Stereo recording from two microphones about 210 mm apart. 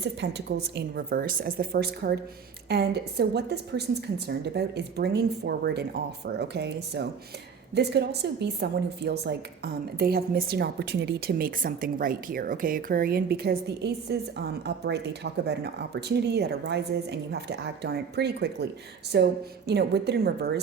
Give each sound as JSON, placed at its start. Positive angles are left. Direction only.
{"t": 0.0, "sound": "a woman's voice", "side_deg": -55}